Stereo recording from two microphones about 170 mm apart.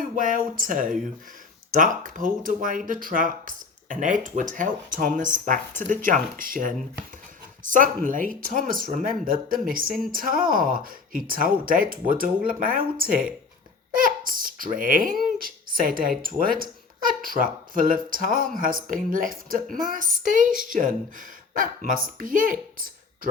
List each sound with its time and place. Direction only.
0.2 s speech: 55° right (ahead or behind)